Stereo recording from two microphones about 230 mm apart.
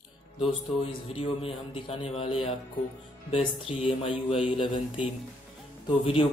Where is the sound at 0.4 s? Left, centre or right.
Left.